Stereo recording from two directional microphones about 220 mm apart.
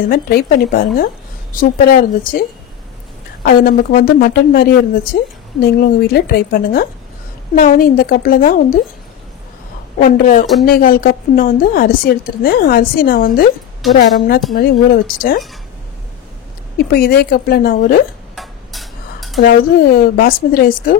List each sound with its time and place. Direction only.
0.1 s a woman's voice: 40° left (ahead or behind)
3.4 s a woman's voice: 40° left (ahead or behind)
9.9 s a woman's voice: 35° left (ahead or behind)
14.5 s a woman's voice: 40° left (ahead or behind)
16.7 s speech: 45° left (ahead or behind)
18.3 s a sound: centre (ahead or behind)
19.4 s a woman's voice: 40° left (ahead or behind)